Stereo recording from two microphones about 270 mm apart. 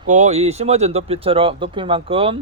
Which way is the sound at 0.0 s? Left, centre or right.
Right.